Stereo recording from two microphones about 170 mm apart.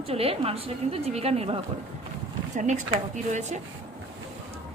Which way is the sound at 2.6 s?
45° right (ahead or behind).